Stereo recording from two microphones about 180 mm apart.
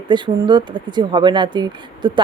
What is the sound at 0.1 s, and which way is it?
Speech, 25° right (ahead or behind).